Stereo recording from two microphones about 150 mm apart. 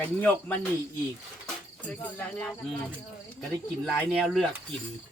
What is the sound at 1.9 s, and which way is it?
Speech, 5° left (ahead or behind).